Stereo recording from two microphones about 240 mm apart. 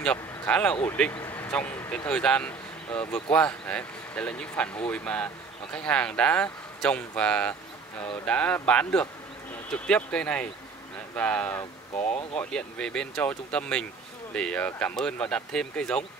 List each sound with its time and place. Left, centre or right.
0.0 s speech: centre